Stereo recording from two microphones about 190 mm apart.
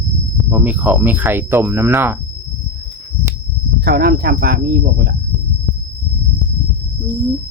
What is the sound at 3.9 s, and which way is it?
Speech, 55° right (ahead or behind).